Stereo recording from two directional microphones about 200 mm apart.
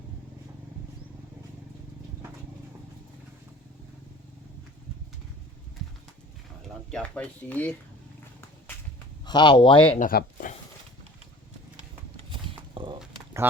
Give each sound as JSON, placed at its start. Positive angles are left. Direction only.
{"t": 6.9, "sound": "speech", "side_deg": 5}
{"t": 9.2, "sound": "speech", "side_deg": 20}
{"t": 10.0, "sound": "speech", "side_deg": 45}
{"t": 12.3, "sound": "a sound", "side_deg": -25}
{"t": 13.4, "sound": "speech", "side_deg": -10}